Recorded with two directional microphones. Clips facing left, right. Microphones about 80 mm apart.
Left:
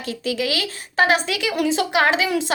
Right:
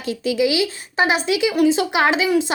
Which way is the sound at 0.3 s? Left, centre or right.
Left.